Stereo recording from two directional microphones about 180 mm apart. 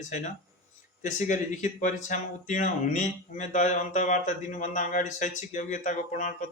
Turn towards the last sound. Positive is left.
turn(degrees=45)  # may be behind; listen again after turning